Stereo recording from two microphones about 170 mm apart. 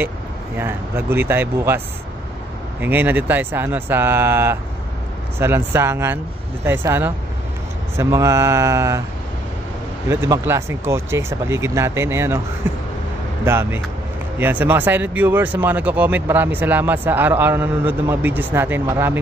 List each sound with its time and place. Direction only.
0.6 s speech: 15° right (ahead or behind)
2.8 s speech: 10° right (ahead or behind)
10.0 s speech: 15° right (ahead or behind)